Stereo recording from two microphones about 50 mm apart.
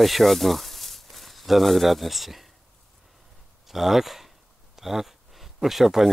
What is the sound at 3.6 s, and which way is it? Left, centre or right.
Speech, centre.